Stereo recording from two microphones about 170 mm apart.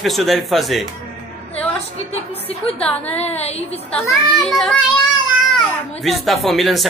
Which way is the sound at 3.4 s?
40° left (ahead or behind).